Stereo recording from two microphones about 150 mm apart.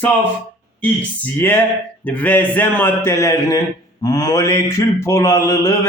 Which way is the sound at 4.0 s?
25° left (ahead or behind).